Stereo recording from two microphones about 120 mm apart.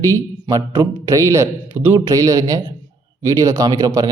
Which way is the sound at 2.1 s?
30° right (ahead or behind).